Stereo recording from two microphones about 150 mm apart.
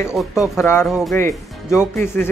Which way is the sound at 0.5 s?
15° left (ahead or behind).